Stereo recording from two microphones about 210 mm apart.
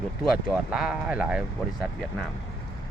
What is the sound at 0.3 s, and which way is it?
Speech, 5° right (ahead or behind).